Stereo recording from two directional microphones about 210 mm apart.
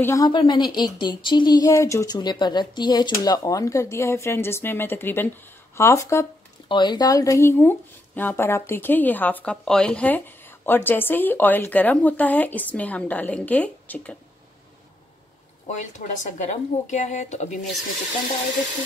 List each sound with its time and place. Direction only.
0.0 s a woman's voice: 15° left (ahead or behind)
15.6 s a woman's voice: 35° left (ahead or behind)